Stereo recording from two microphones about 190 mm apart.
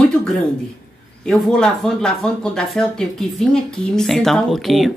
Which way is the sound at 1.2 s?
Centre (ahead or behind).